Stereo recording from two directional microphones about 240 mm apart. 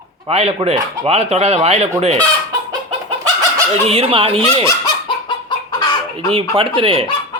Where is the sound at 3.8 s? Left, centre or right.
Right.